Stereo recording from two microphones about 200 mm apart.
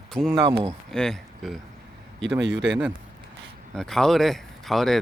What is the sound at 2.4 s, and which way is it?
Speech, 65° right (ahead or behind).